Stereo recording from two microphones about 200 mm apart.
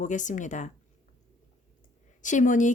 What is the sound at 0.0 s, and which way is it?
Speech, 40° left (ahead or behind).